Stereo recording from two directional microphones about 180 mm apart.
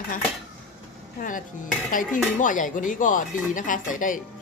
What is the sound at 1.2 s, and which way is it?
Speech, 45° left (ahead or behind).